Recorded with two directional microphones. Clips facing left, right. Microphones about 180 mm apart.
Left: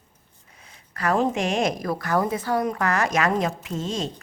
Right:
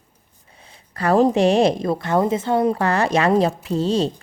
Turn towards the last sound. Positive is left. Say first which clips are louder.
# right 8 dB
turn(degrees=-35)  # may be behind; listen again after turning